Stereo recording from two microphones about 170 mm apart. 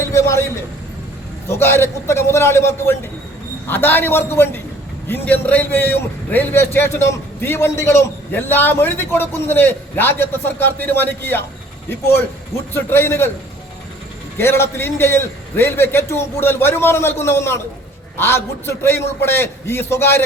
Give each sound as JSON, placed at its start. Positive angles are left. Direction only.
{"t": 0.0, "sound": "a sound", "side_deg": 15}
{"t": 1.5, "sound": "a man's voice", "side_deg": 15}
{"t": 14.3, "sound": "a man's voice", "side_deg": 15}